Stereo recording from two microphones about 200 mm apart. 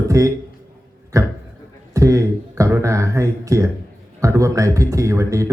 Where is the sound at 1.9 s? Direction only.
15° right (ahead or behind).